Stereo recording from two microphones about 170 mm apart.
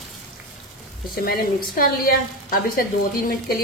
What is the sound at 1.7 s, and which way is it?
A woman's voice, 60° left (ahead or behind).